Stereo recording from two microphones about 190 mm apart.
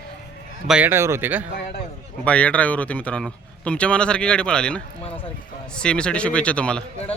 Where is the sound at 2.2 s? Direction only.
5° left (ahead or behind).